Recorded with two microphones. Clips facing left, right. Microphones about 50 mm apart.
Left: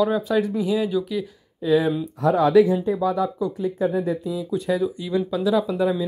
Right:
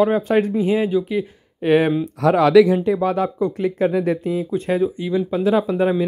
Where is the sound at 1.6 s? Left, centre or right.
Right.